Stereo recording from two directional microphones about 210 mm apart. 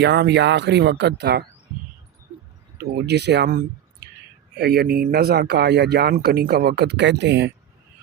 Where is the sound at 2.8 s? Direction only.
50° right (ahead or behind).